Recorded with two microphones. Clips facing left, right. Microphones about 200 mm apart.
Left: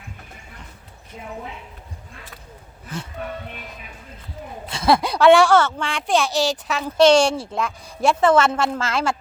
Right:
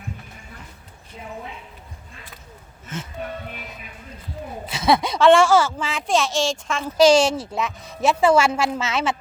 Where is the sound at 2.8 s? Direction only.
35° left (ahead or behind).